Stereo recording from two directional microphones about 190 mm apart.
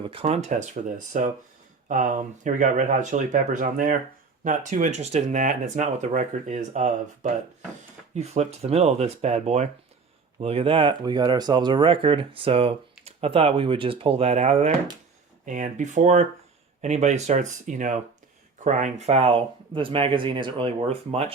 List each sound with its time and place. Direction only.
0.0 s speech: 30° right (ahead or behind)